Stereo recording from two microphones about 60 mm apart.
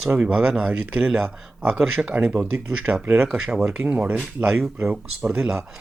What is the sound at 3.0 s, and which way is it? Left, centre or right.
Speech, right.